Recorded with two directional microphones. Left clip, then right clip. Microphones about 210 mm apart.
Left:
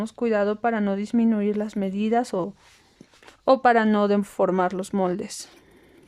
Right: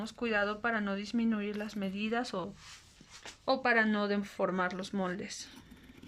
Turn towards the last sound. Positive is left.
turn(degrees=30)  # may be behind; listen again after turning